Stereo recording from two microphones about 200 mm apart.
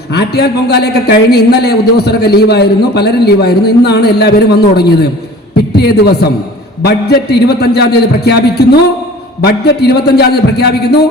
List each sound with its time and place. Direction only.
0.1 s a man's voice: 55° left (ahead or behind)